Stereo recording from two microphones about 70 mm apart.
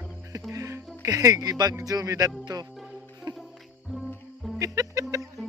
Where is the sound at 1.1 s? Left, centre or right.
Right.